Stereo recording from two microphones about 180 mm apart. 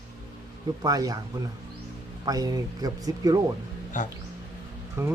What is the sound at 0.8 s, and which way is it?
Speech, 20° right (ahead or behind).